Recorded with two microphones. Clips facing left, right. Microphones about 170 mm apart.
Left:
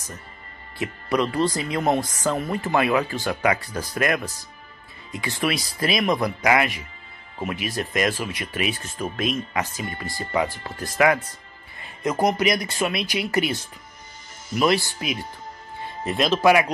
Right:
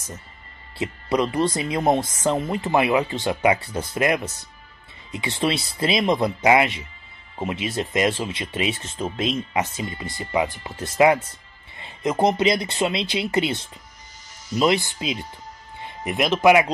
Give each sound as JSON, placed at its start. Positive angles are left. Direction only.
{"t": 0.7, "sound": "speech", "side_deg": -20}